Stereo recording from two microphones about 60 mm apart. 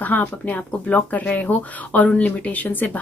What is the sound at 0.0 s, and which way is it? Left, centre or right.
Speech, left.